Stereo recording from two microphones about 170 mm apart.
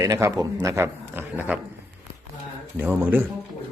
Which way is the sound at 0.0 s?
20° right (ahead or behind).